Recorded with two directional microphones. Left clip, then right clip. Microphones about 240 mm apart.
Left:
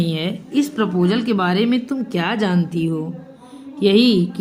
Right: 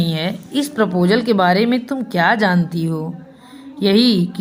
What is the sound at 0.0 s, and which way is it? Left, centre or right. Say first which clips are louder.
A woman's voice: right 2 dB; right.